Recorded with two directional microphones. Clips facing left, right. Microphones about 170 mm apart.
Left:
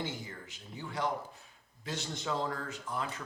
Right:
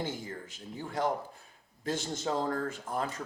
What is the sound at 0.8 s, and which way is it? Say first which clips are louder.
Speech: right 3 dB; 45° right (ahead or behind).